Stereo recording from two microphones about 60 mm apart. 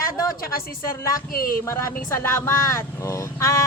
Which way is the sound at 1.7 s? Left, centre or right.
Left.